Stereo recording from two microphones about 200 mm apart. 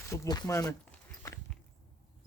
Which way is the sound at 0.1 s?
15° left (ahead or behind).